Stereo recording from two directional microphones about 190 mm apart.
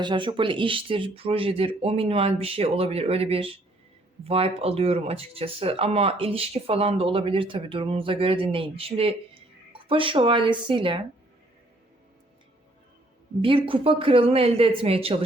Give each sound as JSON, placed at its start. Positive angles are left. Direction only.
{"t": 0.0, "sound": "speech", "side_deg": -25}
{"t": 13.4, "sound": "speech", "side_deg": -25}